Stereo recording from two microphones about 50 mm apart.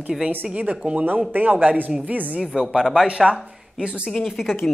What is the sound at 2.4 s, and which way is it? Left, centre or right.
Speech, centre.